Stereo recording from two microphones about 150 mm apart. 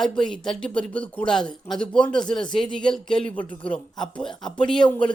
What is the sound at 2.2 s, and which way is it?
Speech, 30° left (ahead or behind).